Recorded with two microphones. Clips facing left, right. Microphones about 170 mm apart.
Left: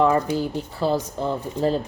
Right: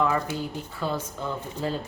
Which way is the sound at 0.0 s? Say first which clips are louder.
Left 6 dB; 35° left (ahead or behind).